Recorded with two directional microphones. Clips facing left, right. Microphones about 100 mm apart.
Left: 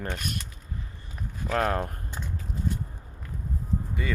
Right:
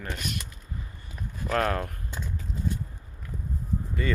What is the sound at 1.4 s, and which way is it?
Speech, 10° left (ahead or behind).